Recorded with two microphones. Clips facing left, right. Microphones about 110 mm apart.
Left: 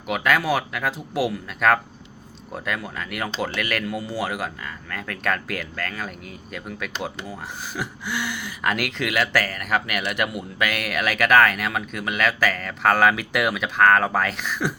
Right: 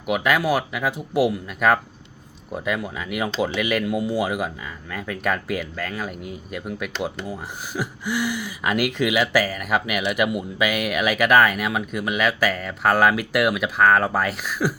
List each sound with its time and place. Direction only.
0.0 s speech: 10° right (ahead or behind)